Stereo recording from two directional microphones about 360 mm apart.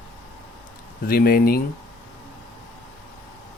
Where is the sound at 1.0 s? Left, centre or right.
Left.